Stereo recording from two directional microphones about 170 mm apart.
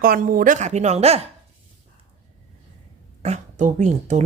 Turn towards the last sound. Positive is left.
turn(degrees=-45)  # may be behind; listen again after turning